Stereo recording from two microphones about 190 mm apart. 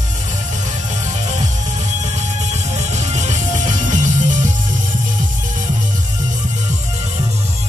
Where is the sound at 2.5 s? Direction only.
35° right (ahead or behind).